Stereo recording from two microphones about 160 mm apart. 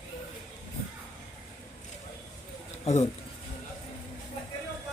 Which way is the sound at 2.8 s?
45° left (ahead or behind).